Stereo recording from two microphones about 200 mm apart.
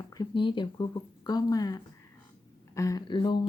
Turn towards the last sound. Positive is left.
turn(degrees=25)  # may be behind; listen again after turning